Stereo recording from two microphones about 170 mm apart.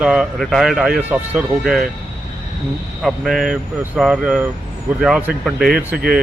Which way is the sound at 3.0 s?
Centre (ahead or behind).